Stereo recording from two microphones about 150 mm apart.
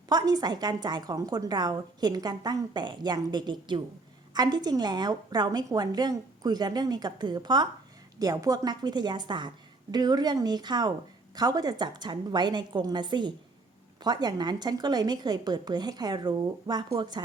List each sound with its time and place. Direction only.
0.1 s a woman's voice: 25° right (ahead or behind)